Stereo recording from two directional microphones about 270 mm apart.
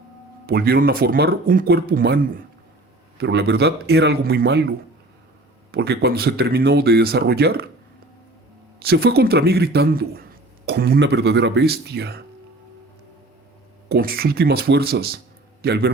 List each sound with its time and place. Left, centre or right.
0.4 s speech: right
5.7 s speech: right
8.8 s speech: right
13.8 s speech: right